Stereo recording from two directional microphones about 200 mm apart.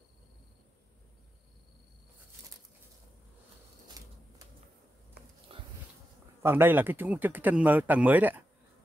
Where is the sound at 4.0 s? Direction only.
15° right (ahead or behind).